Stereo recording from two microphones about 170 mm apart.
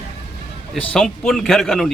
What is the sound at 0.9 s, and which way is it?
A man's voice, 5° left (ahead or behind).